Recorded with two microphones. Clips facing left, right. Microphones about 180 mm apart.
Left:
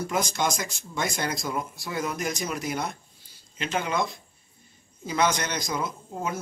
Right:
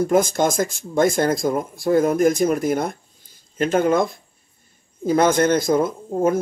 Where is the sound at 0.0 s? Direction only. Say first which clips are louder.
Right 10 dB; 50° right (ahead or behind).